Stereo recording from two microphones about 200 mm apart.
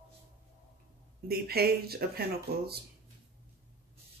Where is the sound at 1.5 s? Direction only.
50° right (ahead or behind).